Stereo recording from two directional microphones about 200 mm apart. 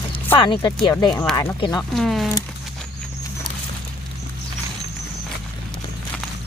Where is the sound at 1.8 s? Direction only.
Centre (ahead or behind).